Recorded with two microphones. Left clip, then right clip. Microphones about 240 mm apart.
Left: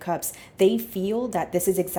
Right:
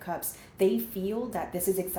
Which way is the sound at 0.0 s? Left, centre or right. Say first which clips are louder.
Left 7 dB; left.